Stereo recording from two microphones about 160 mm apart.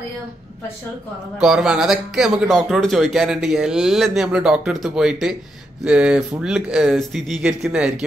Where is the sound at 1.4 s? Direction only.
5° right (ahead or behind).